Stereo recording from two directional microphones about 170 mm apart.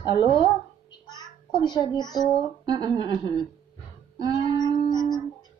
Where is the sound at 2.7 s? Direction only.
20° right (ahead or behind).